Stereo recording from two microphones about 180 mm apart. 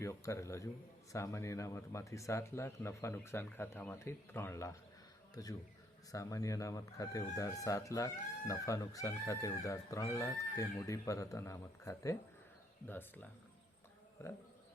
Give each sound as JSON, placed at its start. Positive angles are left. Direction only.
{"t": 0.0, "sound": "speech", "side_deg": 15}